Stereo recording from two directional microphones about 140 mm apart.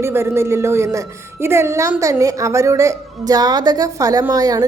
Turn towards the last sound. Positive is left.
turn(degrees=-25)  # may be behind; listen again after turning